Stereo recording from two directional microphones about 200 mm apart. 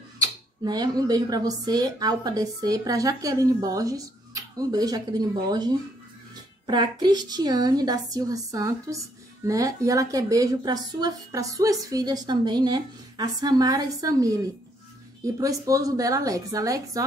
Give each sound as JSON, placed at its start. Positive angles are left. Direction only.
{"t": 0.2, "sound": "a woman's voice", "side_deg": -20}